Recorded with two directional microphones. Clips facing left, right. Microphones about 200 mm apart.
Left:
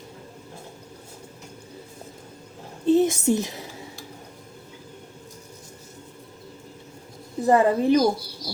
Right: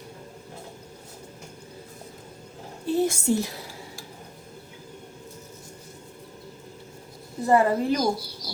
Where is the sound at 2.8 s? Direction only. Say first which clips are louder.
Left 5 dB; 20° left (ahead or behind).